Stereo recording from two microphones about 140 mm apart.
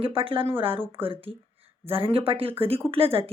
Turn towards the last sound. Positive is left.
turn(degrees=-45)  # may be behind; listen again after turning